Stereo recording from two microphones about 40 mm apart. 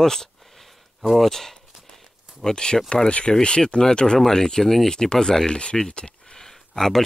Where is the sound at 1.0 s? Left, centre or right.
Centre.